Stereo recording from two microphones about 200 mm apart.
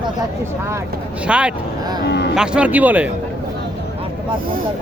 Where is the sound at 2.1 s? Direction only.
60° left (ahead or behind).